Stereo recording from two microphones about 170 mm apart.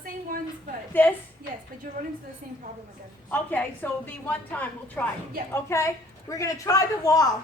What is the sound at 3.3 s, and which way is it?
A woman's voice, 10° left (ahead or behind).